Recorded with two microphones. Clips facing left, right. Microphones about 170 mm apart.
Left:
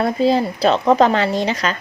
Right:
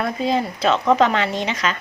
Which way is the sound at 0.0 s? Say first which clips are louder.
Left 5 dB; 35° left (ahead or behind).